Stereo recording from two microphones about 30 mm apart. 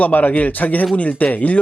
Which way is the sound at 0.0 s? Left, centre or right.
Left.